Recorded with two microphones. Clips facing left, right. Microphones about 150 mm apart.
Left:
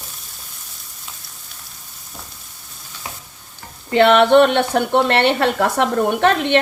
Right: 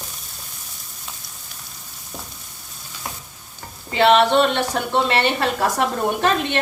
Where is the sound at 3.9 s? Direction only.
60° left (ahead or behind).